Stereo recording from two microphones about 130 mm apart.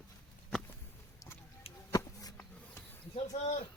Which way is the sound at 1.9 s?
25° left (ahead or behind).